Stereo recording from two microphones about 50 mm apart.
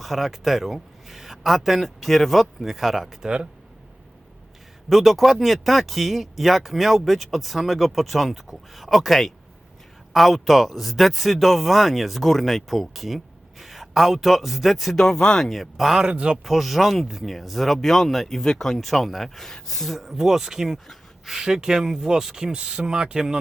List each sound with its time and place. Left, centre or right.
0.0 s speech: centre
4.9 s speech: centre
15.4 s speech: centre
16.1 s speech: right
16.4 s speech: centre
20.8 s a sound: centre
21.3 s speech: centre